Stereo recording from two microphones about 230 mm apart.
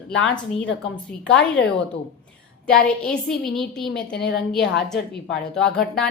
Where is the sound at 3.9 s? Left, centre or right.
Left.